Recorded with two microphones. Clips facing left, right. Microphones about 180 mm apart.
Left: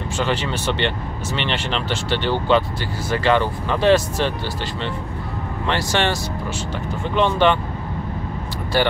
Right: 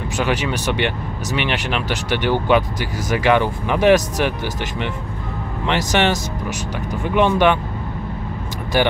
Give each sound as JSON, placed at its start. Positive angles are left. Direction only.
{"t": 0.2, "sound": "speech", "side_deg": -15}
{"t": 5.7, "sound": "speech", "side_deg": -15}
{"t": 7.2, "sound": "speech", "side_deg": -15}
{"t": 8.7, "sound": "speech", "side_deg": -15}